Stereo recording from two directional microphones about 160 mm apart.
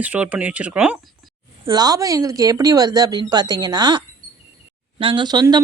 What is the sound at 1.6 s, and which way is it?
Speech, 25° right (ahead or behind).